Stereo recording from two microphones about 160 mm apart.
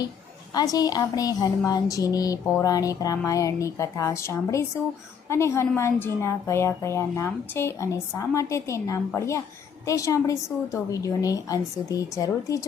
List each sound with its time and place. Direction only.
0.5 s a woman's voice: 25° left (ahead or behind)